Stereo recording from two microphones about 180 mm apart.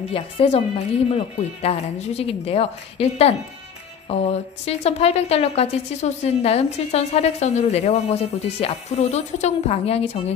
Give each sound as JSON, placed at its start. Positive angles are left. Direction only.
{"t": 0.1, "sound": "speech", "side_deg": 35}